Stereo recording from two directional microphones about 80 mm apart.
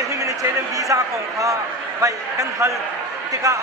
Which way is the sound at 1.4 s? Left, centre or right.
Right.